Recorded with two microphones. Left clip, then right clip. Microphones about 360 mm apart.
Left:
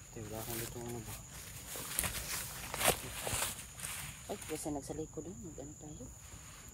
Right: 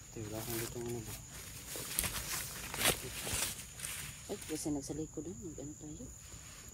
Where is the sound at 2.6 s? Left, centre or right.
Centre.